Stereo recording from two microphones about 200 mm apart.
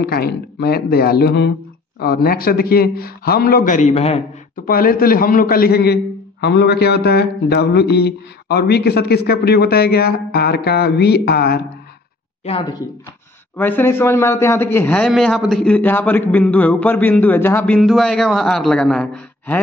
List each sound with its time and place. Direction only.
0.0 s speech: 50° left (ahead or behind); by 4.2 s 30° left (ahead or behind)
4.6 s speech: 45° left (ahead or behind)
13.6 s a man's voice: 10° left (ahead or behind)
15.0 s a man's voice: centre (ahead or behind)